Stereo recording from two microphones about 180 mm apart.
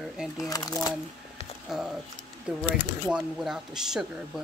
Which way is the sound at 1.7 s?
Centre (ahead or behind).